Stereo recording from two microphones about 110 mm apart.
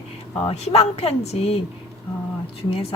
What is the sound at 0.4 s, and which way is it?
Speech, 70° left (ahead or behind).